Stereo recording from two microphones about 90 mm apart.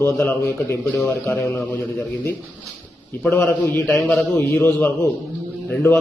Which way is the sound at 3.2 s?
20° left (ahead or behind).